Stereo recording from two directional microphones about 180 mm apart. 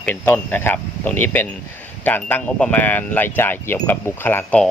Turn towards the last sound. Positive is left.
turn(degrees=10)  # may be behind; listen again after turning